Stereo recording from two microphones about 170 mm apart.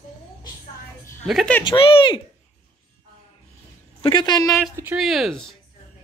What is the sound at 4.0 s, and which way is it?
Speech, 30° left (ahead or behind).